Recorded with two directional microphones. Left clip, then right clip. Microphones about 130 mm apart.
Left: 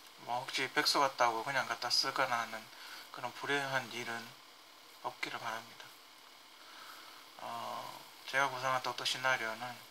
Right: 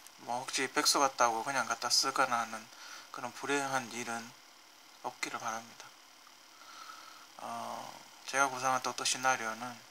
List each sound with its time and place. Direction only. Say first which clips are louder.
0.3 s speech: right 1 dB; 35° right (ahead or behind)
7.4 s speech: right 1 dB; 35° right (ahead or behind)